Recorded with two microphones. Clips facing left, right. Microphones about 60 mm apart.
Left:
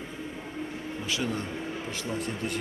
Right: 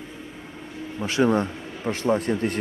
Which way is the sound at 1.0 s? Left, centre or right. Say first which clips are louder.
Right 12 dB; right.